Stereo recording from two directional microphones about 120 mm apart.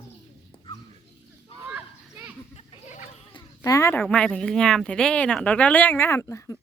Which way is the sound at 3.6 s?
25° left (ahead or behind).